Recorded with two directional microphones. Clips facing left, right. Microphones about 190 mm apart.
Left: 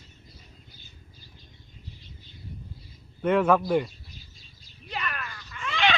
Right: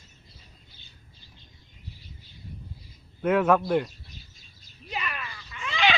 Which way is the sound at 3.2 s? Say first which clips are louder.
Even; 5° right (ahead or behind).